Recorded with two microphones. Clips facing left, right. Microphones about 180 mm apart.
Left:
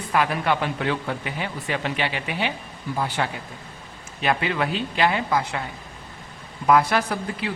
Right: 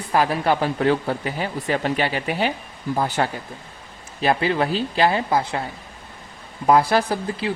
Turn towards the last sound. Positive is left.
turn(degrees=-30)  # may be behind; listen again after turning